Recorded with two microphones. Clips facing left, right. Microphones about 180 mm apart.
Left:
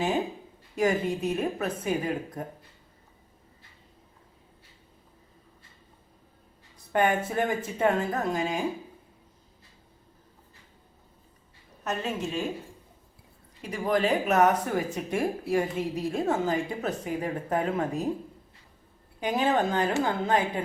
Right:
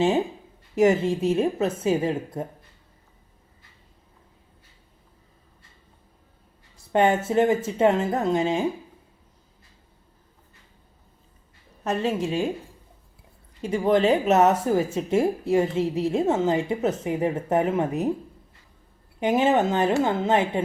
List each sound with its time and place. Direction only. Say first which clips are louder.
0.8 s a woman's voice: right 6 dB; 25° right (ahead or behind)
6.7 s a woman's voice: right 4 dB; 25° right (ahead or behind)
11.8 s a woman's voice: right 6 dB; 30° right (ahead or behind)
13.6 s a woman's voice: right 6 dB; 30° right (ahead or behind)
19.2 s a woman's voice: right 5 dB; 25° right (ahead or behind)